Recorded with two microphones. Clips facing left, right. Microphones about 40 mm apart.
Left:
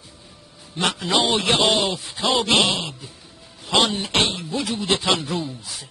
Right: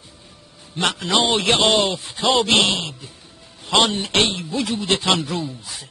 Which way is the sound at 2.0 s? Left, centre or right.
Right.